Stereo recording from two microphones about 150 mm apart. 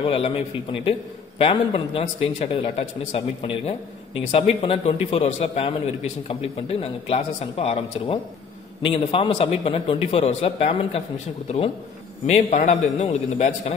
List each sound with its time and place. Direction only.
0.0 s a man's voice: 40° left (ahead or behind)
12.3 s a man's voice: 50° left (ahead or behind)